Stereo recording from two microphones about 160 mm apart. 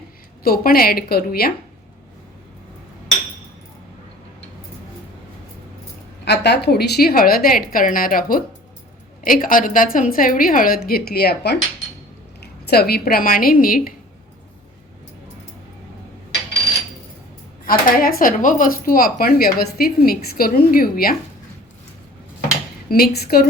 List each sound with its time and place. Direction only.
0.4 s a woman's voice: 70° left (ahead or behind)
6.2 s a woman's voice: 90° left; by 13.9 s 60° left (ahead or behind)
17.7 s speech: 65° left (ahead or behind)
22.9 s a woman's voice: 75° left (ahead or behind)